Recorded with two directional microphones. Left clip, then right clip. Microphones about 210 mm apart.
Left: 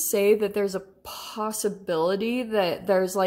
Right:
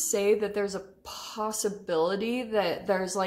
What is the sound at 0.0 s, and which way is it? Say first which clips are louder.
A woman's voice: left 4 dB; 30° left (ahead or behind).